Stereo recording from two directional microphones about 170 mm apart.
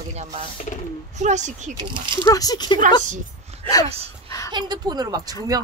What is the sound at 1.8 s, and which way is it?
Speech, 25° right (ahead or behind).